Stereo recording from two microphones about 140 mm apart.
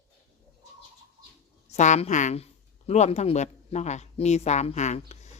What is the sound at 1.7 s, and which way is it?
Speech, 55° left (ahead or behind).